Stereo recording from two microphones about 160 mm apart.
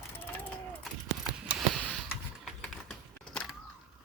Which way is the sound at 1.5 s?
Centre (ahead or behind).